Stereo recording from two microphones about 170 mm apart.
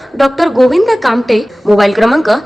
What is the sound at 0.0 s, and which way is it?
A woman's voice, centre (ahead or behind).